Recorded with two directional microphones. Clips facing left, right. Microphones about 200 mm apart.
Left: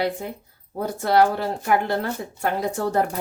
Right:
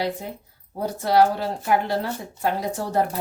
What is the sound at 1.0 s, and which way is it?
Speech, 55° left (ahead or behind).